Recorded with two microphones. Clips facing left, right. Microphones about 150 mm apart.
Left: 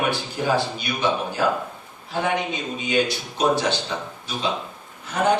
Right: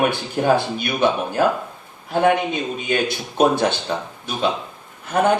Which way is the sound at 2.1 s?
55° right (ahead or behind).